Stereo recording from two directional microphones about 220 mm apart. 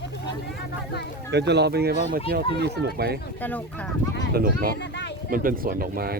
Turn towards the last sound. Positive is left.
turn(degrees=-40)  # may be behind; listen again after turning